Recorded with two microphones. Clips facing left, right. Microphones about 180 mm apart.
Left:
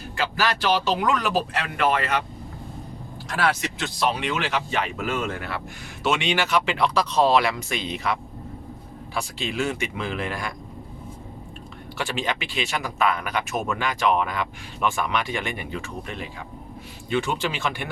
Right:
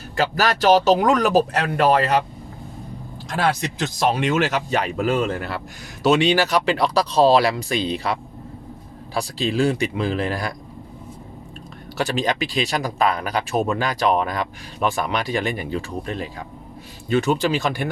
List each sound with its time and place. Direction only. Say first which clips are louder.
0.2 s speech: right 5 dB; 40° right (ahead or behind)
3.2 s speech: right 2 dB; 30° right (ahead or behind)
11.9 s speech: right 6 dB; 40° right (ahead or behind)